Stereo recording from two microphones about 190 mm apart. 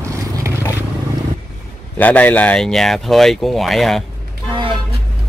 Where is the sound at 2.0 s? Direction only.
10° left (ahead or behind).